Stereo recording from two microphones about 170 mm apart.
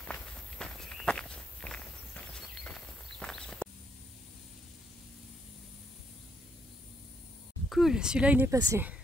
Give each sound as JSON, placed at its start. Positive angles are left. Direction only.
{"t": 0.0, "sound": "walk", "side_deg": 5}
{"t": 7.7, "sound": "a woman's voice", "side_deg": 0}